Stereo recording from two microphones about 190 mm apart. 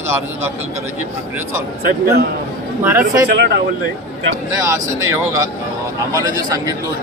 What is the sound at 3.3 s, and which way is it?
Speech, 65° right (ahead or behind).